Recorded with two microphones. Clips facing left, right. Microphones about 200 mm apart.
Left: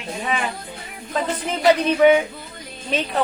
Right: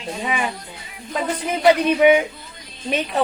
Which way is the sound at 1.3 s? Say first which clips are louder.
Right 2 dB; 10° right (ahead or behind).